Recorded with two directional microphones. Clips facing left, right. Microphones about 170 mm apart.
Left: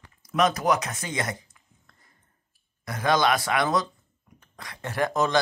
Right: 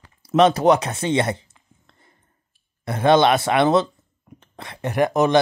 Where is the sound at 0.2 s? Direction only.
30° right (ahead or behind).